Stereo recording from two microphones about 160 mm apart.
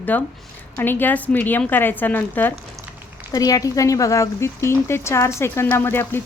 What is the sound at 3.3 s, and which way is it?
Speech, 25° left (ahead or behind).